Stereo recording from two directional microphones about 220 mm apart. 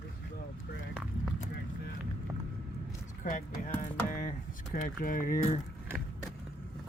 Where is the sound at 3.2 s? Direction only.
35° left (ahead or behind).